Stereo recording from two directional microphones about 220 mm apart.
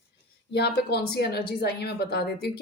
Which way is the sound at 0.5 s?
50° left (ahead or behind).